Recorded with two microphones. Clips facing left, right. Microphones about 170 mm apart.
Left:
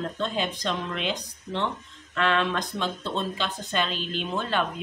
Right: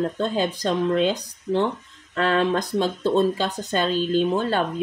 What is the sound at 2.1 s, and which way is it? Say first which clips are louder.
Speech: right 4 dB; 40° right (ahead or behind).